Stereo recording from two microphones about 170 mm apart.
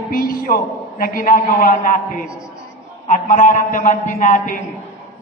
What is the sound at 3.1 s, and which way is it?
A man's voice, 50° left (ahead or behind).